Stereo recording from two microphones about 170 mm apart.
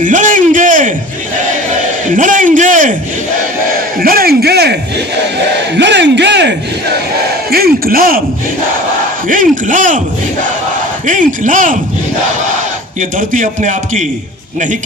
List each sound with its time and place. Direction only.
0.0 s a sound: 50° right (ahead or behind)
2.0 s a man's voice: 50° right (ahead or behind)
4.0 s speech: 60° right (ahead or behind)
5.7 s speech: 90° right
7.5 s speech: 60° right (ahead or behind)
9.2 s a man's voice: 50° right (ahead or behind)
11.0 s a man's voice: 50° right (ahead or behind)
13.0 s a man's voice: 50° right (ahead or behind)